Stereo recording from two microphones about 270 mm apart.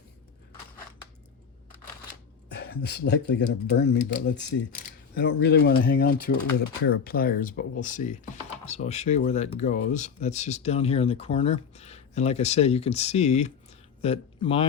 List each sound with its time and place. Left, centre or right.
2.5 s speech: left